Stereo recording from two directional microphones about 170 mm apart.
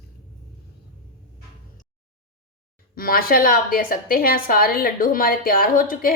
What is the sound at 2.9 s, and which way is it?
A woman's voice, 60° left (ahead or behind).